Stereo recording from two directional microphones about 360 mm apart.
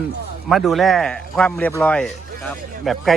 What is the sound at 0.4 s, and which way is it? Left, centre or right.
Speech, centre.